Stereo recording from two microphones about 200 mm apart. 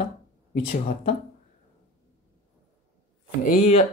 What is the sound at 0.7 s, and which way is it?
Speech, 45° left (ahead or behind).